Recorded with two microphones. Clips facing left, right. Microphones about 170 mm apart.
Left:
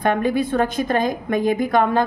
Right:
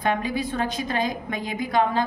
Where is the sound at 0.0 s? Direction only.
55° left (ahead or behind).